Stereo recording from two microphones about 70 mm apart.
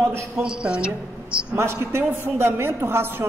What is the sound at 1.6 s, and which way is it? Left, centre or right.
A man's voice, right.